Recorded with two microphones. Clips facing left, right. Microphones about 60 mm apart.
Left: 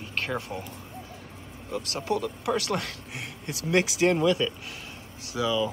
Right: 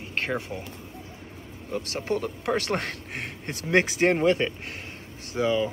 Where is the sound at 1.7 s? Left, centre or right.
Right.